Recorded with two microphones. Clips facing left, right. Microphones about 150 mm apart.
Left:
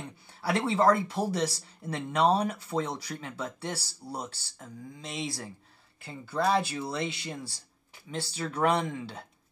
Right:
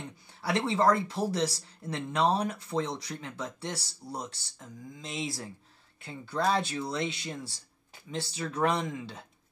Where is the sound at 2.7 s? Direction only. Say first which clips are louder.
Even; 20° left (ahead or behind).